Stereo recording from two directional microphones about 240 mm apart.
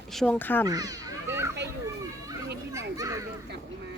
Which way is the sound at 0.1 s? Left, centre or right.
Centre.